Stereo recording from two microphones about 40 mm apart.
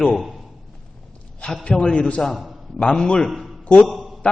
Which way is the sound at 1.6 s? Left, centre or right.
Left.